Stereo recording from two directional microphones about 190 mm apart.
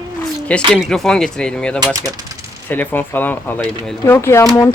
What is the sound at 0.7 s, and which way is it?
Speech, centre (ahead or behind).